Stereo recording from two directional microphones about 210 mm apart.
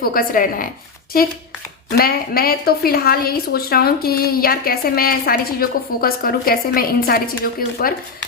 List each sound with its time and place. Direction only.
0.0 s a woman's voice: 45° left (ahead or behind)